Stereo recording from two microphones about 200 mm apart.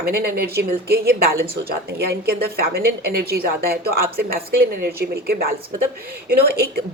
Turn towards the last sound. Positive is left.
turn(degrees=-50)  # may be behind; listen again after turning